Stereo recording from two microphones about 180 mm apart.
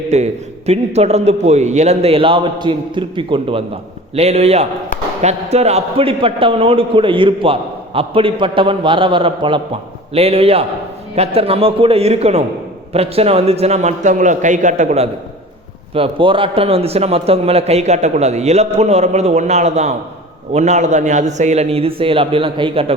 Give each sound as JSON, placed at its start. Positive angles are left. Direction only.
{"t": 0.1, "sound": "a man's voice", "side_deg": -35}
{"t": 16.0, "sound": "a man's voice", "side_deg": -30}